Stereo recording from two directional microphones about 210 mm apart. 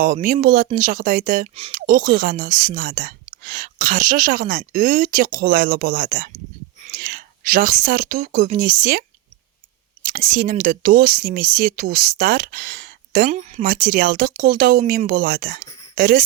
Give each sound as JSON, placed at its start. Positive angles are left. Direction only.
{"t": 0.0, "sound": "speech", "side_deg": -40}
{"t": 10.1, "sound": "speech", "side_deg": -40}